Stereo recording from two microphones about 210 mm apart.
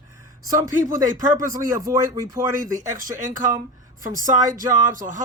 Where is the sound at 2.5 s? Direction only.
40° right (ahead or behind).